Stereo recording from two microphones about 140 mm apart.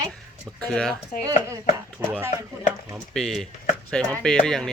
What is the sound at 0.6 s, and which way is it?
Speech, 5° left (ahead or behind).